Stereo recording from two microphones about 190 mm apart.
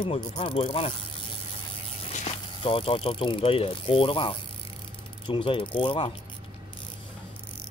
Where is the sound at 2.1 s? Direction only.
30° left (ahead or behind).